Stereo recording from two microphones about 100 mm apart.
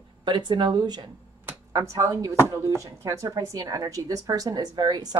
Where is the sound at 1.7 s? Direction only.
30° right (ahead or behind).